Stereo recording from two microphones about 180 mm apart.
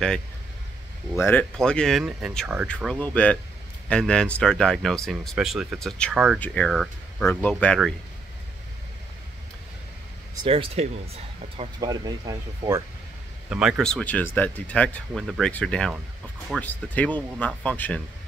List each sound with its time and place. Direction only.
1.1 s speech: 10° left (ahead or behind); by 6.4 s 5° right (ahead or behind)
6.4 s speech: 5° left (ahead or behind)
10.4 s speech: 30° right (ahead or behind)
11.8 s speech: 20° right (ahead or behind)
13.5 s speech: 5° right (ahead or behind)